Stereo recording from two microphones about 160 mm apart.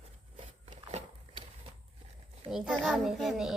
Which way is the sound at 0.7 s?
40° right (ahead or behind).